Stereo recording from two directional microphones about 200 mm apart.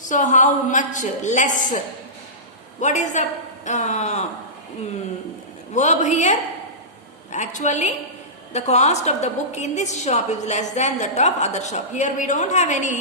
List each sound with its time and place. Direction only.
0.0 s a woman's voice: 40° left (ahead or behind)
2.8 s a woman's voice: 35° left (ahead or behind)
5.7 s a woman's voice: 35° left (ahead or behind)